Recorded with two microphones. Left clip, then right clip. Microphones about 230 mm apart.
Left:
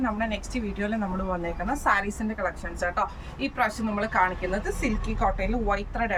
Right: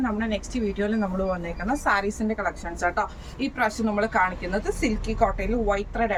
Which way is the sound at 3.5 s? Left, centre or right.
Centre.